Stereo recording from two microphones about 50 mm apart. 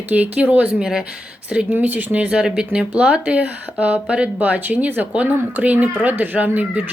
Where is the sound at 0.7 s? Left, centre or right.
Centre.